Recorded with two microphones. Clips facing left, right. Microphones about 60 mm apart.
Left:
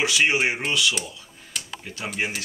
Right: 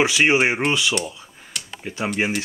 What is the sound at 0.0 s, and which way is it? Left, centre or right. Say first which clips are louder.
Speech: right 4 dB; right.